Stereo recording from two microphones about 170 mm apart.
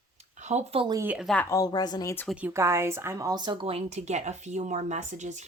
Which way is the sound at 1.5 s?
20° left (ahead or behind).